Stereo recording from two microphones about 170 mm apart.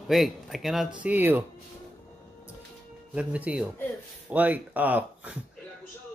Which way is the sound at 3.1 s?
5° right (ahead or behind).